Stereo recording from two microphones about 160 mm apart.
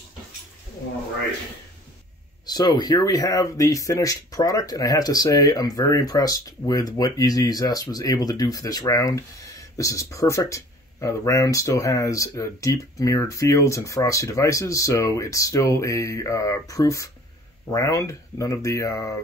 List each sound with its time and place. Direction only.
2.4 s speech: 25° left (ahead or behind)